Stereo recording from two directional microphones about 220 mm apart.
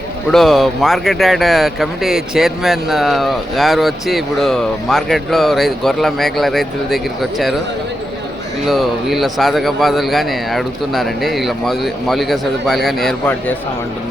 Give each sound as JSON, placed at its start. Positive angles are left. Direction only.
{"t": 0.3, "sound": "speech", "side_deg": 0}
{"t": 8.6, "sound": "speech", "side_deg": 0}